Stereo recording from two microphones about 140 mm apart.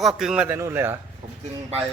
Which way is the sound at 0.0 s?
Centre (ahead or behind).